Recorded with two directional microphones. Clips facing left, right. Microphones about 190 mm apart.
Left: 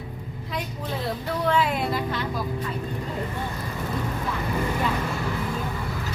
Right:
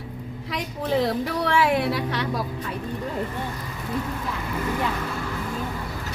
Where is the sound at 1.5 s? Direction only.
85° right.